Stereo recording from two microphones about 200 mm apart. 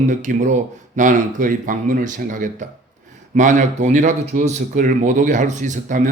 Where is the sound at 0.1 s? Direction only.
40° right (ahead or behind).